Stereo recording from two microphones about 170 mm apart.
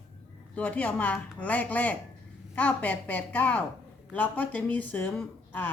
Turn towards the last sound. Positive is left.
turn(degrees=10)  # may be behind; listen again after turning